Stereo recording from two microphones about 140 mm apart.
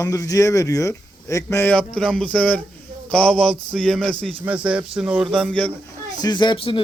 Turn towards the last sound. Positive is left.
turn(degrees=40)  # may be behind; listen again after turning